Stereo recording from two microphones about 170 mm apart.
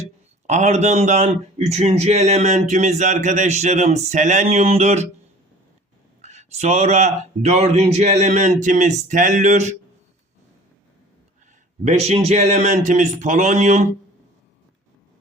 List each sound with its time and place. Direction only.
0.4 s a man's voice: 40° right (ahead or behind)
6.2 s speech: 40° right (ahead or behind)
11.9 s a man's voice: 40° right (ahead or behind)